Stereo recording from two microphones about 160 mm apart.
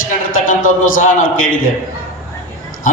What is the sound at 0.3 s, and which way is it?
A man's voice, 60° left (ahead or behind).